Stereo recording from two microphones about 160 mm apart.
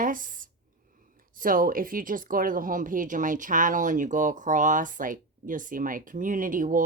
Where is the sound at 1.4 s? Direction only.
60° right (ahead or behind).